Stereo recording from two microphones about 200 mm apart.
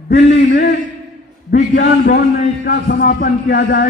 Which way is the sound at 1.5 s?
40° left (ahead or behind).